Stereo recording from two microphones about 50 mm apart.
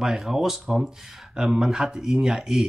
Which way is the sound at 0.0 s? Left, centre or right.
Centre.